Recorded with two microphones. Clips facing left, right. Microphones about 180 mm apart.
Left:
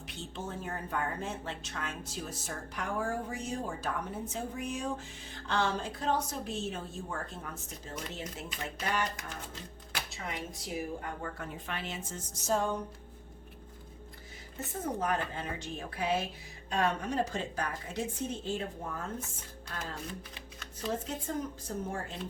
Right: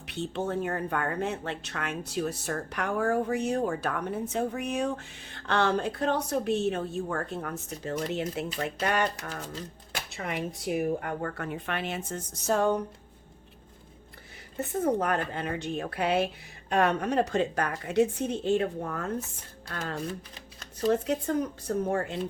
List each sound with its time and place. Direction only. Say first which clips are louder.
0.0 s a woman's voice: right 9 dB; 65° right (ahead or behind)
9.1 s speech: right 6 dB; 35° right (ahead or behind)
10.1 s speech: right 10 dB; 65° right (ahead or behind)
14.6 s a woman's voice: right 8 dB; 65° right (ahead or behind)